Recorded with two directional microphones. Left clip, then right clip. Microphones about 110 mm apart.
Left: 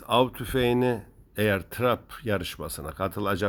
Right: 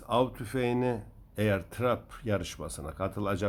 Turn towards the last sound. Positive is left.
turn(degrees=40)  # may be behind; listen again after turning